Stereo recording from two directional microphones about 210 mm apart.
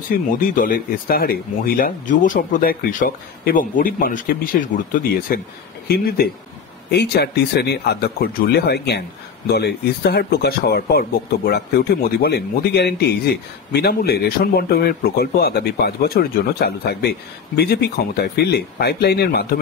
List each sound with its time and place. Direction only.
0.1 s speech: 40° left (ahead or behind)